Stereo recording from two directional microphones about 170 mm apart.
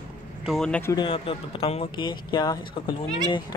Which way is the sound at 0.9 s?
30° left (ahead or behind).